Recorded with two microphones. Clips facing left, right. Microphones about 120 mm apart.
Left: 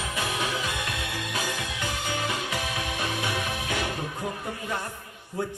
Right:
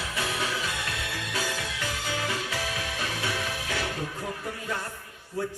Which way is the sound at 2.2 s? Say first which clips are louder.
Left 1 dB; 20° left (ahead or behind).